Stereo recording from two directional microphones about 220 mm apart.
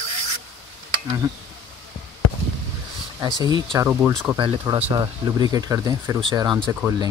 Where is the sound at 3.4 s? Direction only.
20° right (ahead or behind).